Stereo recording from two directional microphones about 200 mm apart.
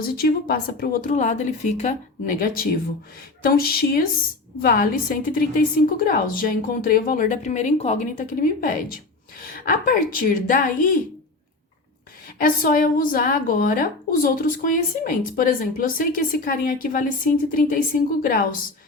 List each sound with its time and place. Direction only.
0.0 s a woman's voice: 50° left (ahead or behind)
12.4 s a woman's voice: 45° left (ahead or behind)